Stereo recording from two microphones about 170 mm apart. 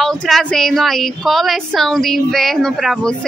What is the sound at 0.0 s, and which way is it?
A woman's voice, centre (ahead or behind).